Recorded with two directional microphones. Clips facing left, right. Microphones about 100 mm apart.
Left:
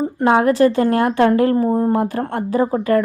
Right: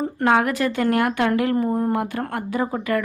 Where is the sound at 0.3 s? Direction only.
30° left (ahead or behind).